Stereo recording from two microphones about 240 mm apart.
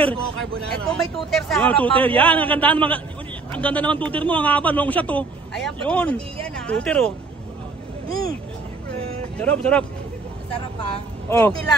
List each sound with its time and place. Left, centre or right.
0.7 s speech: centre
8.1 s speech: centre
9.4 s speech: centre
11.2 s speech: centre